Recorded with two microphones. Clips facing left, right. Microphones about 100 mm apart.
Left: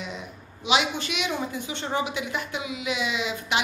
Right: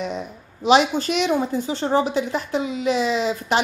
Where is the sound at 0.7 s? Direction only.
40° right (ahead or behind).